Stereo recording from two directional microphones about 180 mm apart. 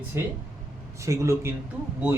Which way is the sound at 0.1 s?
15° right (ahead or behind).